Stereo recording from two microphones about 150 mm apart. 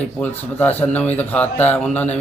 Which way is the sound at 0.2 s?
10° left (ahead or behind).